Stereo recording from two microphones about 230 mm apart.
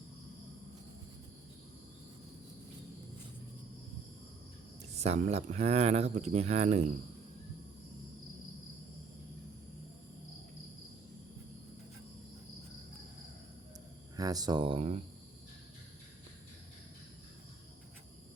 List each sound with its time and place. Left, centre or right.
4.9 s speech: right
14.2 s speech: centre